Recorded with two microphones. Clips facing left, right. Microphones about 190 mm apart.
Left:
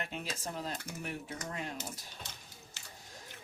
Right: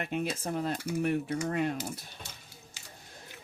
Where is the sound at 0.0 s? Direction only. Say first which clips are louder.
Right 8 dB; 55° right (ahead or behind).